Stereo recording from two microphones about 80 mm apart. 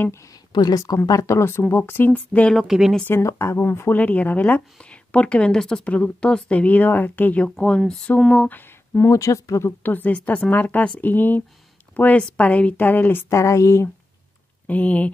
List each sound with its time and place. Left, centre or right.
0.0 s speech: left
0.5 s a woman's voice: left; by 2.5 s centre
2.5 s speech: centre
3.1 s speech: left
4.0 s a woman's voice: centre
9.1 s speech: left
9.7 s a woman's voice: left
13.3 s speech: left
14.7 s a woman's voice: centre